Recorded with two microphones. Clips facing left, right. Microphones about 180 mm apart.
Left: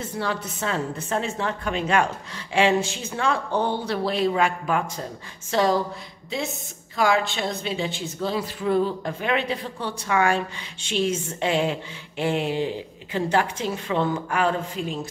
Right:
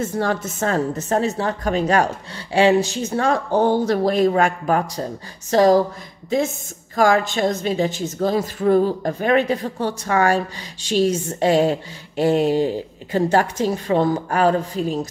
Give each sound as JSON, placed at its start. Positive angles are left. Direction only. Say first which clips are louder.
{"t": 0.0, "sound": "a woman's voice", "louder": "right 6 dB", "side_deg": -45}